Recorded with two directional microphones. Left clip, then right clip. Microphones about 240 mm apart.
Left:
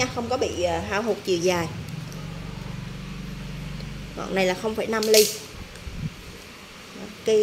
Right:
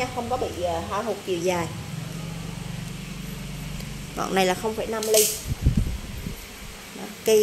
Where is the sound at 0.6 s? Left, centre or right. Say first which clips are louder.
Left 2 dB; left.